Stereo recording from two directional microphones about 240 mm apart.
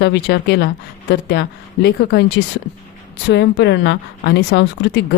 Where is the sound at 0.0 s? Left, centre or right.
Left.